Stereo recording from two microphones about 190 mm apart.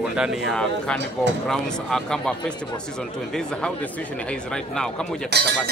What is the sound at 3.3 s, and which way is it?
Speech, 5° left (ahead or behind).